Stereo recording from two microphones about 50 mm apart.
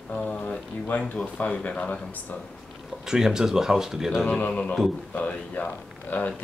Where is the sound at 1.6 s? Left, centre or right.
Left.